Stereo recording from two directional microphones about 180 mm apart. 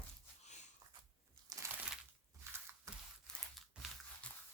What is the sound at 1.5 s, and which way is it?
Crumpling, 15° right (ahead or behind).